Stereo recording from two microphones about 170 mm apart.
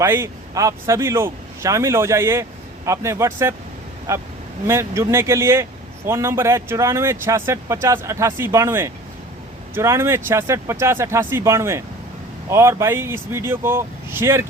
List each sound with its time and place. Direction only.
0.0 s a man's voice: 15° right (ahead or behind)